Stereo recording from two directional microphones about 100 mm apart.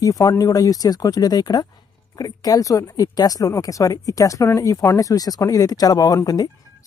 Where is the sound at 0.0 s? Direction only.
30° left (ahead or behind).